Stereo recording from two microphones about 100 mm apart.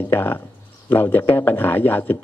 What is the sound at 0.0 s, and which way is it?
Speech, 20° left (ahead or behind).